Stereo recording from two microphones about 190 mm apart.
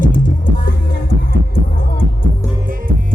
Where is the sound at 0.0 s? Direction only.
45° left (ahead or behind).